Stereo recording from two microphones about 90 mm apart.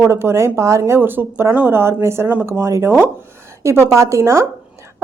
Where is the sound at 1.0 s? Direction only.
20° right (ahead or behind).